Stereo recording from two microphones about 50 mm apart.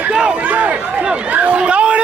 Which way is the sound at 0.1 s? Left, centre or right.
Right.